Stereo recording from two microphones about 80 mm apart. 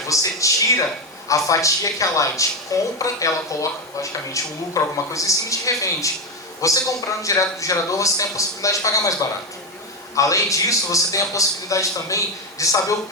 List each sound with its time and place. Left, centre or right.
0.1 s speech: left
10.2 s speech: left